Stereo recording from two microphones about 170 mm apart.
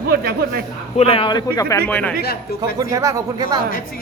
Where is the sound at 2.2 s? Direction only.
65° left (ahead or behind).